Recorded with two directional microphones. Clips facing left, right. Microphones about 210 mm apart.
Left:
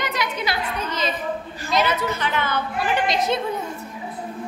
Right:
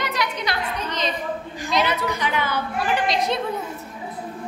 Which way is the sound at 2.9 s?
Centre (ahead or behind).